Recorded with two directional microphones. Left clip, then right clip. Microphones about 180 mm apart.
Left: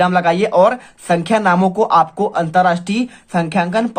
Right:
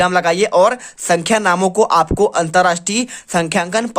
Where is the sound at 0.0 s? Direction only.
35° right (ahead or behind).